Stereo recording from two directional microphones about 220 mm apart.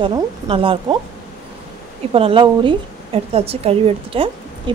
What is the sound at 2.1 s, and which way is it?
A woman's voice, 25° right (ahead or behind).